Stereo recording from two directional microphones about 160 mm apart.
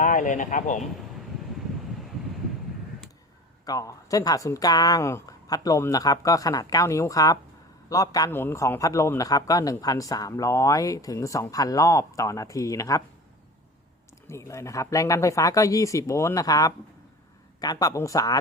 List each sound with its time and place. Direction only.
0.0 s speech: 55° left (ahead or behind)
3.7 s a man's voice: 20° left (ahead or behind)
14.3 s a man's voice: 15° left (ahead or behind)